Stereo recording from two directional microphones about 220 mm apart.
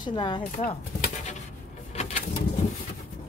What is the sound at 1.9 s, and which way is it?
Bird, 30° left (ahead or behind).